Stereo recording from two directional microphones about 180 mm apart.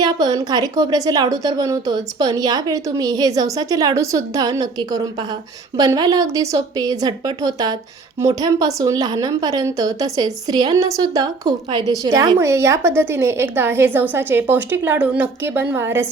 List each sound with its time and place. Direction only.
0.0 s a woman's voice: 20° right (ahead or behind)